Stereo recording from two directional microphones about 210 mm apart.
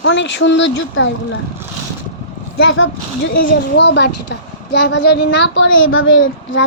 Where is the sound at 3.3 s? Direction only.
50° left (ahead or behind); by 6.6 s 65° left (ahead or behind).